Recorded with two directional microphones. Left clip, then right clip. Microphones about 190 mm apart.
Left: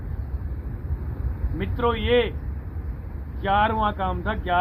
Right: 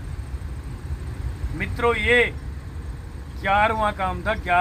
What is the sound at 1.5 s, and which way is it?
Speech, 30° right (ahead or behind).